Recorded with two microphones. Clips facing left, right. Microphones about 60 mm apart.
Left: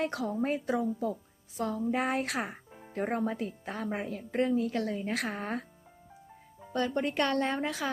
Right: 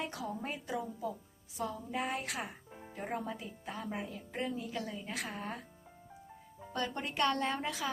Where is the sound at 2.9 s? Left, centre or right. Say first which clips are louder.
Left 8 dB; left.